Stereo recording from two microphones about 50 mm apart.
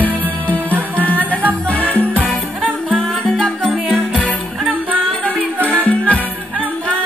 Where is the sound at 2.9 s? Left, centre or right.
Centre.